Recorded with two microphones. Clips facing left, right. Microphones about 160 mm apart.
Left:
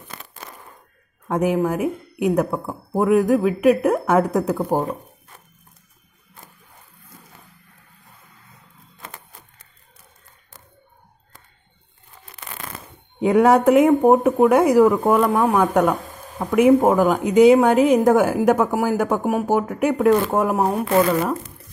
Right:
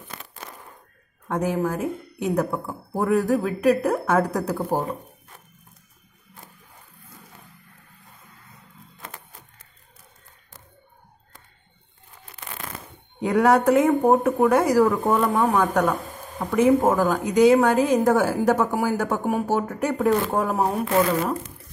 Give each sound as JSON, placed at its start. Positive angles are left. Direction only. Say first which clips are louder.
{"t": 1.3, "sound": "speech", "louder": "left 4 dB", "side_deg": 20}
{"t": 13.2, "sound": "speech", "louder": "left 4 dB", "side_deg": 20}
{"t": 15.1, "sound": "speech", "louder": "left 3 dB", "side_deg": 5}
{"t": 15.5, "sound": "speech", "louder": "left 3 dB", "side_deg": 20}